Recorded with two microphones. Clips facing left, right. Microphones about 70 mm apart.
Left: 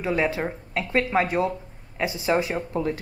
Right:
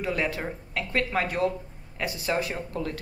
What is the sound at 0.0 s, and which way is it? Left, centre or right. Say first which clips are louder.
Speech: left 4 dB; left.